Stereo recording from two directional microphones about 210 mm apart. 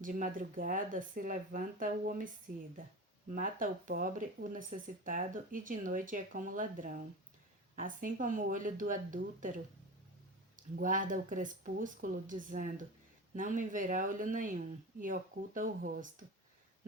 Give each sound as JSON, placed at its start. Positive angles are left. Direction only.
{"t": 0.0, "sound": "speech", "side_deg": -40}
{"t": 3.3, "sound": "speech", "side_deg": -40}
{"t": 10.6, "sound": "speech", "side_deg": -40}